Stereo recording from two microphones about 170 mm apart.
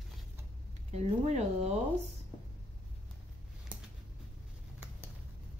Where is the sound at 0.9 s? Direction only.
40° right (ahead or behind).